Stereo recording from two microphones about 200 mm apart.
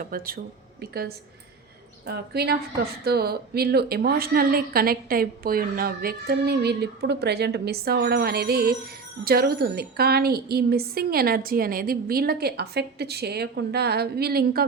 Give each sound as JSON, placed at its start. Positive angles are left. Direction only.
{"t": 0.0, "sound": "a woman's voice", "side_deg": -45}